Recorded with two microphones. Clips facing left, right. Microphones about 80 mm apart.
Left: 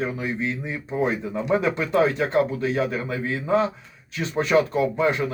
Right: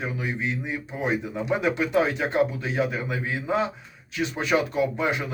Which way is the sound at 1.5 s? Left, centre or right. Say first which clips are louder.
Left 2 dB; centre.